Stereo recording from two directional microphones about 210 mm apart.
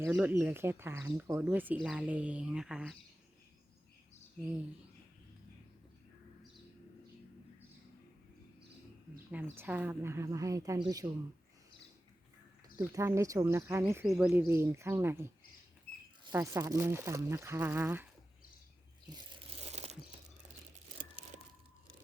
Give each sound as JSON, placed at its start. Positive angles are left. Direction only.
{"t": 0.0, "sound": "speech", "side_deg": -5}
{"t": 9.3, "sound": "speech", "side_deg": -10}
{"t": 12.7, "sound": "speech", "side_deg": -15}
{"t": 16.3, "sound": "speech", "side_deg": -15}
{"t": 19.1, "sound": "crumpling", "side_deg": -25}